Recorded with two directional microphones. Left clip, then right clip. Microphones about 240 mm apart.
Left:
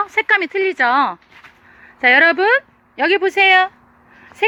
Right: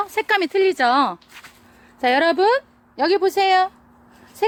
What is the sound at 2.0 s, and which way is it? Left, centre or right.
Speech, centre.